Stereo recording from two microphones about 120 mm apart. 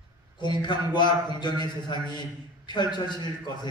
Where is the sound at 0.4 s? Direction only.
40° left (ahead or behind).